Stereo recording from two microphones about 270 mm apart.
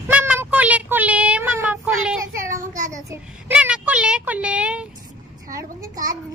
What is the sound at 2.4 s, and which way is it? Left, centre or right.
Child singing, right.